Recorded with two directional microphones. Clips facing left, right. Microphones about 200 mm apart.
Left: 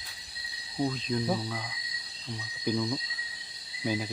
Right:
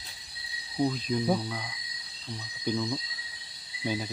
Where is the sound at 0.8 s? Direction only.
5° right (ahead or behind).